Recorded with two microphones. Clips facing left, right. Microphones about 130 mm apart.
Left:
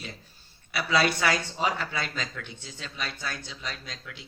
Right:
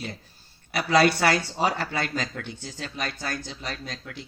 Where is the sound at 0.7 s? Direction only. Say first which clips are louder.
Right 5 dB; 40° right (ahead or behind).